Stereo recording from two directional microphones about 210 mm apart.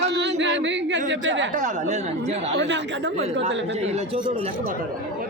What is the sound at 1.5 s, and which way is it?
Speech, 35° right (ahead or behind).